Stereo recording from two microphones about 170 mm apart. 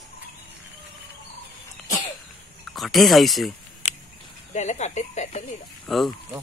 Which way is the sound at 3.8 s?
45° left (ahead or behind).